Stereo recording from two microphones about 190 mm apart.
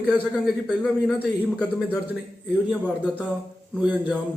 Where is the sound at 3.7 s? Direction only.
5° right (ahead or behind).